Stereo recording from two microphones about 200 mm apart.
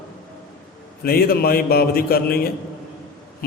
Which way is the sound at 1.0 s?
50° left (ahead or behind).